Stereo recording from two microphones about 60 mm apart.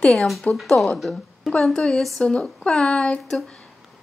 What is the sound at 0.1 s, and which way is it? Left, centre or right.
A woman's voice, centre.